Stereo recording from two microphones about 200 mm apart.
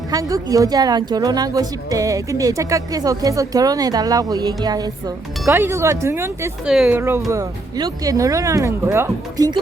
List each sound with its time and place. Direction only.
0.1 s a woman's voice: 15° right (ahead or behind)